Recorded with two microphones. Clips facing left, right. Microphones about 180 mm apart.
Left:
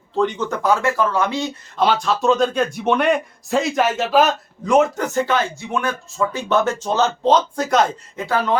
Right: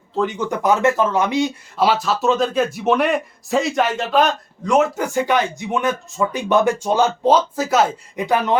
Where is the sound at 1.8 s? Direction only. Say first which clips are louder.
Even; 5° right (ahead or behind).